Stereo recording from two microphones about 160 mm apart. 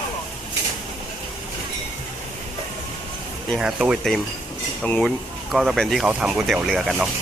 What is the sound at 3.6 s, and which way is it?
Speech, 5° right (ahead or behind).